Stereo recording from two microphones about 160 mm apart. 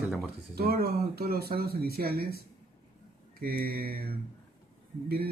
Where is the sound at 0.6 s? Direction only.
75° right (ahead or behind).